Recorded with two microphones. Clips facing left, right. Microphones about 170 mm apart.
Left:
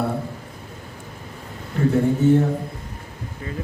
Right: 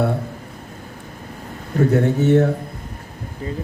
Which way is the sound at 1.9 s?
75° right (ahead or behind).